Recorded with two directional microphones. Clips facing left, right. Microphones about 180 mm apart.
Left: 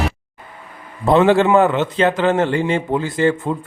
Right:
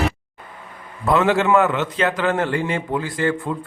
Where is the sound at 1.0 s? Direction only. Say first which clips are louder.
Left 5 dB; 30° left (ahead or behind).